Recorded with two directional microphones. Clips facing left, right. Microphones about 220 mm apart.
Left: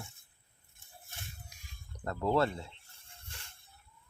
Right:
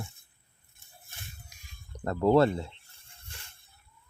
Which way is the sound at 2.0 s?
35° right (ahead or behind).